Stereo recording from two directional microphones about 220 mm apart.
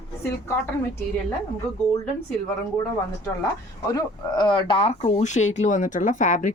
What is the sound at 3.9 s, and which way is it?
A woman's voice, 20° left (ahead or behind).